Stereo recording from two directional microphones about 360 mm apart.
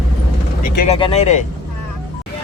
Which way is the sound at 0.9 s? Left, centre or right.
Centre.